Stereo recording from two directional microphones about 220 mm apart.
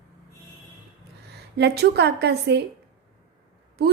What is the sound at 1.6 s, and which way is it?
A woman's voice, 50° right (ahead or behind).